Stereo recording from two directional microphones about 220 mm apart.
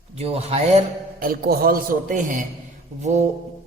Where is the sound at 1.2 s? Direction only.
40° right (ahead or behind).